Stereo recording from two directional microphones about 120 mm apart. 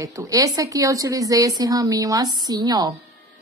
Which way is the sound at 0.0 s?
30° right (ahead or behind).